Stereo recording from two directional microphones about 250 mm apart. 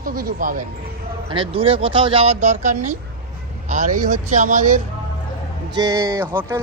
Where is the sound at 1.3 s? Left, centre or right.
Right.